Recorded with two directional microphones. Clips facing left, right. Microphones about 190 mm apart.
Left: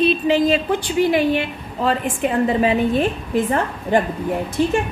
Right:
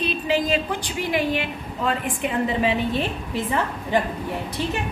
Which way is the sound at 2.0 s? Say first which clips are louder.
Left 5 dB; 45° left (ahead or behind).